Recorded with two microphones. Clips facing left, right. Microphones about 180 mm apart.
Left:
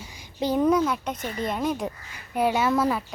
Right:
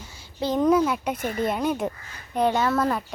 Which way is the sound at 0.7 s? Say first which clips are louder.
Right 2 dB; 5° right (ahead or behind).